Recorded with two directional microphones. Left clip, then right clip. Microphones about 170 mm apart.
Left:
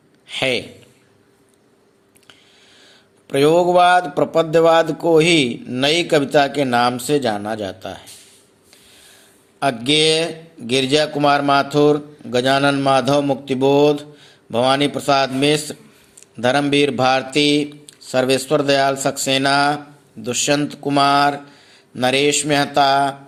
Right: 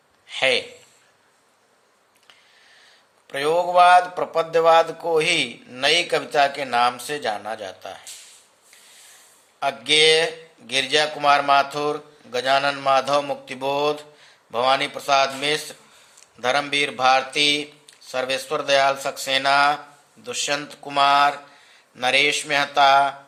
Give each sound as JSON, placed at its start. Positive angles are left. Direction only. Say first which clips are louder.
{"t": 0.3, "sound": "a sound", "louder": "even", "side_deg": 30}
{"t": 3.2, "sound": "a man's voice", "louder": "left 7 dB", "side_deg": 30}
{"t": 9.6, "sound": "a man's voice", "louder": "left 2 dB", "side_deg": 30}